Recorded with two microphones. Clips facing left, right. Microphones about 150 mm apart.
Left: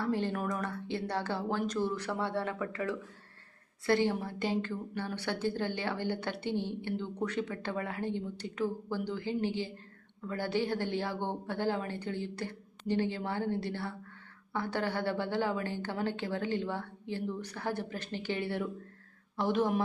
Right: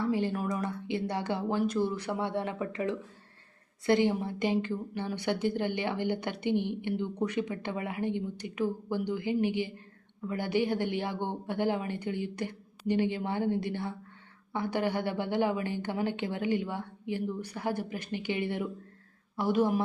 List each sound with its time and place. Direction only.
0.0 s a woman's voice: 10° right (ahead or behind)